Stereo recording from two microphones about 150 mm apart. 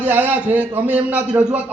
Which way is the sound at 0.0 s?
10° right (ahead or behind).